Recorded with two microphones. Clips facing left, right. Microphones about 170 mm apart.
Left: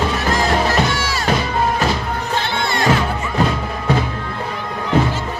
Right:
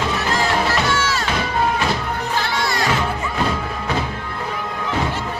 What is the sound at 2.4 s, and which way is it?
Music, 25° left (ahead or behind).